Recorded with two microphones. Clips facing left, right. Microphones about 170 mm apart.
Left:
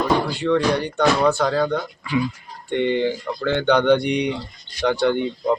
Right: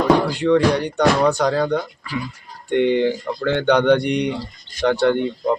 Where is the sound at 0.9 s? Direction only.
15° right (ahead or behind).